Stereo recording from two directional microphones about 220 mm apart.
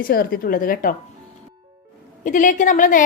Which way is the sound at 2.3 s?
35° left (ahead or behind).